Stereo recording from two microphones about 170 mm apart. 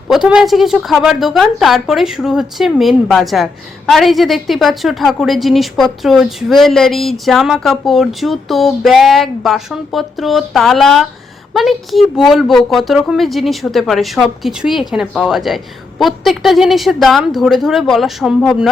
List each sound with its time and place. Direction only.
0.1 s a woman's voice: 5° right (ahead or behind)